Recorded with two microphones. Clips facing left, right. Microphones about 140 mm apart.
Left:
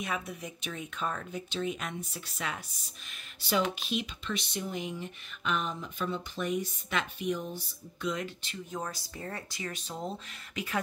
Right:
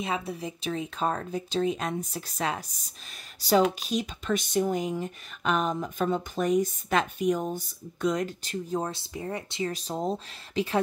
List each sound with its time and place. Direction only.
0.0 s speech: 30° right (ahead or behind)
9.1 s speech: 15° right (ahead or behind)
9.7 s speech: 35° right (ahead or behind)